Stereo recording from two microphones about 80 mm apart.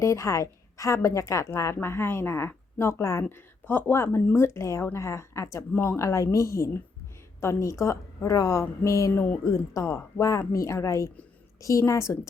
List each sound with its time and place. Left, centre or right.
0.0 s a woman's voice: left